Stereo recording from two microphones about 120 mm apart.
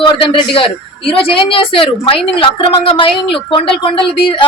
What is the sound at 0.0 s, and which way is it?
A woman's voice, 45° left (ahead or behind).